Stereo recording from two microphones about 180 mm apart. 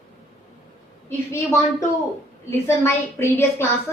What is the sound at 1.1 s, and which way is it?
A woman's voice, 15° left (ahead or behind).